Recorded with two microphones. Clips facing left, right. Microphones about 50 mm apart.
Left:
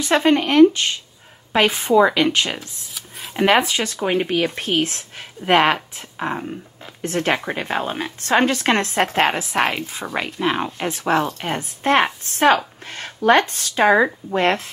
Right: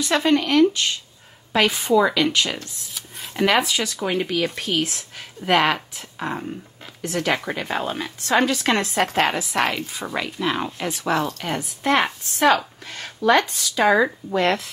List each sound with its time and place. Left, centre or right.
0.0 s a woman's voice: left